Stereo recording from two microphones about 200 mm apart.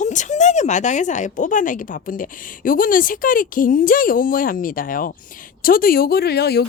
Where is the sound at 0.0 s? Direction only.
35° left (ahead or behind).